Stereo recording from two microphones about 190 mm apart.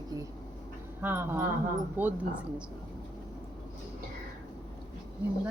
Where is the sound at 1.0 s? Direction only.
10° right (ahead or behind).